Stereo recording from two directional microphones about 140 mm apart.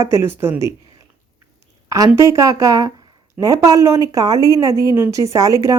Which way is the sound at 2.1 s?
20° right (ahead or behind).